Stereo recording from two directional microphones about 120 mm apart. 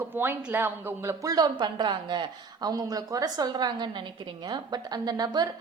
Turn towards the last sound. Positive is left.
turn(degrees=-35)  # may be behind; listen again after turning